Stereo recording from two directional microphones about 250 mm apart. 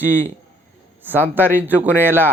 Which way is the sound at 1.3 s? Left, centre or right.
Centre.